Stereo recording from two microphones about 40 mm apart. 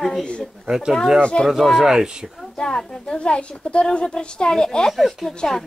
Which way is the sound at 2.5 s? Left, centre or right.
Left.